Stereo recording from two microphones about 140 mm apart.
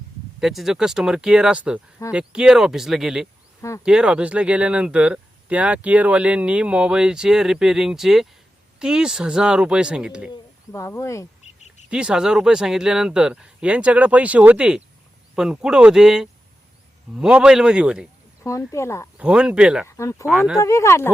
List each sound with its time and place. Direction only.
0.3 s speech: centre (ahead or behind)
10.7 s speech: 20° left (ahead or behind)
11.9 s speech: 5° right (ahead or behind)
18.7 s speech: 20° left (ahead or behind)
19.1 s speech: 5° right (ahead or behind)
19.9 s speech: 20° left (ahead or behind)
20.2 s speech: 5° right (ahead or behind)
20.6 s speech: 20° left (ahead or behind)